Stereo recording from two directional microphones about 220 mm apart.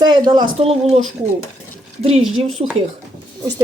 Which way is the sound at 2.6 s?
30° right (ahead or behind).